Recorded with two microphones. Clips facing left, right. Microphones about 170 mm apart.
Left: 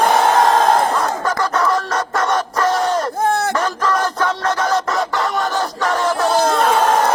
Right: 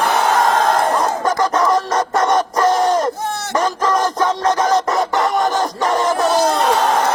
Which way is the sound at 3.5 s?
15° right (ahead or behind).